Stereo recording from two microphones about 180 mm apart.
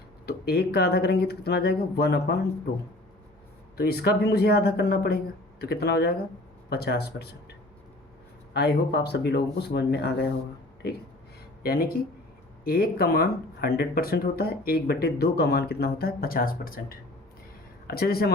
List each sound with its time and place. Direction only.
0.3 s speech: 65° left (ahead or behind)
3.8 s speech: 60° left (ahead or behind)
8.5 s speech: 65° left (ahead or behind)
11.6 s speech: 55° left (ahead or behind)